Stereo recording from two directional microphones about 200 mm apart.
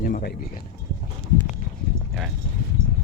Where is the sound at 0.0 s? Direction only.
45° left (ahead or behind).